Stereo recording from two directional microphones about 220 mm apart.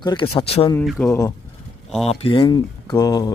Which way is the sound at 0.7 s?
10° left (ahead or behind).